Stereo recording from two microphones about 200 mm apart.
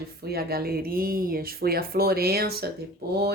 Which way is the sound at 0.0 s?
50° right (ahead or behind).